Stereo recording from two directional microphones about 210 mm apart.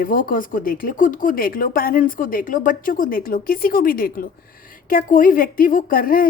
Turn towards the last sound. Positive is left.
turn(degrees=45)  # may be behind; listen again after turning